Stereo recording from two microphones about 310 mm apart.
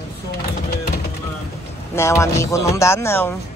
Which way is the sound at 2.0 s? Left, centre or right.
Centre.